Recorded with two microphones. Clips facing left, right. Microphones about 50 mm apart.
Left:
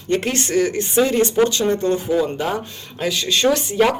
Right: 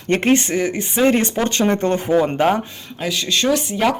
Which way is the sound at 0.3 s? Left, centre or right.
Centre.